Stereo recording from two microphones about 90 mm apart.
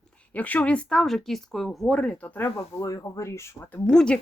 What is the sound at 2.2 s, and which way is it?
Speech, 20° left (ahead or behind).